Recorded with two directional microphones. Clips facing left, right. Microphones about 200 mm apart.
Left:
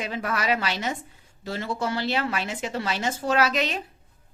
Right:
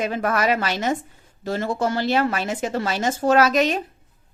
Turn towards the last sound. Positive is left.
turn(degrees=-45)  # may be behind; listen again after turning